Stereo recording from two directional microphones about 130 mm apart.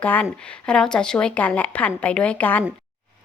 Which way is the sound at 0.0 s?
10° left (ahead or behind).